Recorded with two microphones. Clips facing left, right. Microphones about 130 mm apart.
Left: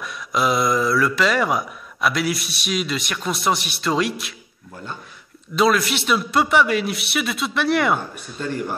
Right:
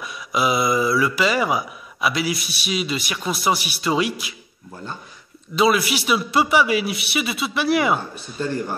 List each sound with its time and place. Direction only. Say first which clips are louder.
0.0 s speech: even; 5° right (ahead or behind)
5.6 s a man's voice: even; 5° right (ahead or behind)